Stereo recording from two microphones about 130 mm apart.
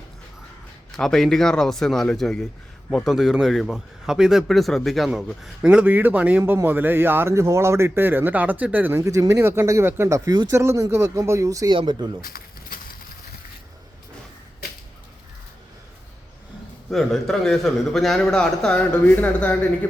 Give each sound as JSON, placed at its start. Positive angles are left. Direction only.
{"t": 0.9, "sound": "speech", "side_deg": 5}
{"t": 5.6, "sound": "speech", "side_deg": -10}
{"t": 9.0, "sound": "speech", "side_deg": -25}
{"t": 11.7, "sound": "speech", "side_deg": -40}
{"t": 12.2, "sound": "a sound", "side_deg": 90}
{"t": 16.9, "sound": "speech", "side_deg": 0}